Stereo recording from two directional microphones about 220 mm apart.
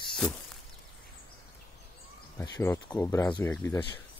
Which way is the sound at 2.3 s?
15° left (ahead or behind).